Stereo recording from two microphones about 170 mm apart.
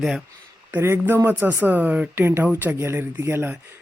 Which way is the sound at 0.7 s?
15° right (ahead or behind).